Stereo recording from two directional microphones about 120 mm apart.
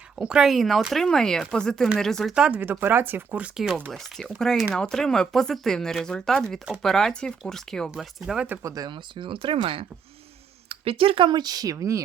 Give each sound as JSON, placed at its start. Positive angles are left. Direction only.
{"t": 0.2, "sound": "speech", "side_deg": -5}
{"t": 2.3, "sound": "speech", "side_deg": -10}
{"t": 3.9, "sound": "speech", "side_deg": 5}
{"t": 8.6, "sound": "speech", "side_deg": -30}